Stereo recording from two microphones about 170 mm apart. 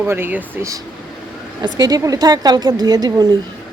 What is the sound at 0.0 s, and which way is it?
Speech, 10° right (ahead or behind).